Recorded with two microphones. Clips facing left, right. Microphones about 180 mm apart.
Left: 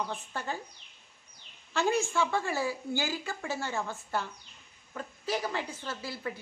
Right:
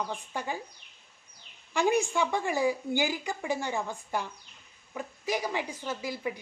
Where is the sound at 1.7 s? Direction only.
15° right (ahead or behind).